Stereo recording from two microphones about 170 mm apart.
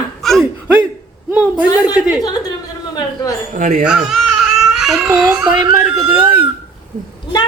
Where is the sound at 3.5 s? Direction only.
50° right (ahead or behind).